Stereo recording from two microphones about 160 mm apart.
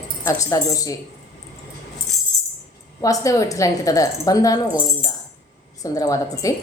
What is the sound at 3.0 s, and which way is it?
Music, 20° left (ahead or behind).